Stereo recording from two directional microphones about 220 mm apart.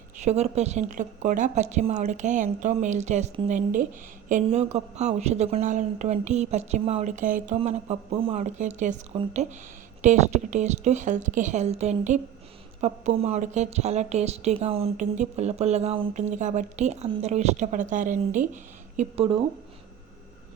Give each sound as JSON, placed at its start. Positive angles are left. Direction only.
{"t": 0.2, "sound": "speech", "side_deg": -30}